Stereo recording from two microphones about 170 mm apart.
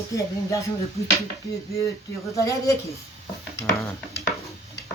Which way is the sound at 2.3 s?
20° left (ahead or behind).